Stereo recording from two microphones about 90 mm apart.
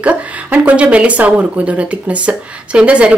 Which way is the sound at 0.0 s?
15° right (ahead or behind).